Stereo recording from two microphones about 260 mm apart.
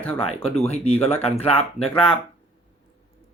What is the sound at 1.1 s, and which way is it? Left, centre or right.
Speech, centre.